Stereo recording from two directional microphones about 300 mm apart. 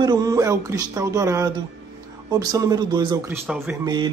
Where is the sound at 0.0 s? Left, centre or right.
Centre.